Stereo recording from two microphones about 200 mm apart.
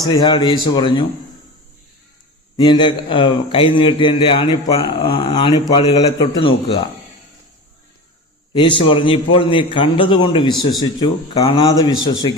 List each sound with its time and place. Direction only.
0.0 s a man's voice: 20° left (ahead or behind)
2.6 s a man's voice: 20° left (ahead or behind)
8.5 s a man's voice: 25° left (ahead or behind)